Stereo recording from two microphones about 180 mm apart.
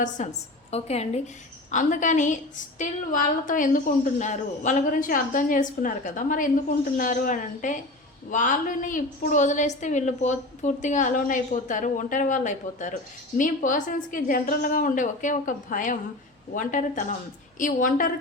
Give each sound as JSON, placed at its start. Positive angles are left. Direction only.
{"t": 0.2, "sound": "a woman's voice", "side_deg": 40}